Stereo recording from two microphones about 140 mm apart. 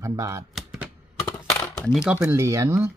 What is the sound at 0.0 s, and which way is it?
Speech, 25° right (ahead or behind).